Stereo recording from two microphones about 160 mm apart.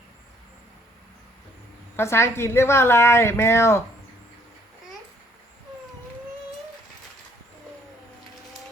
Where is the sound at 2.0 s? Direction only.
15° left (ahead or behind).